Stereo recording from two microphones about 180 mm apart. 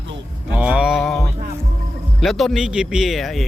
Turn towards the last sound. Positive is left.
turn(degrees=0)  # may be behind; listen again after turning